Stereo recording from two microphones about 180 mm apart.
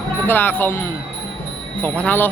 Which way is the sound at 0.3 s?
10° left (ahead or behind).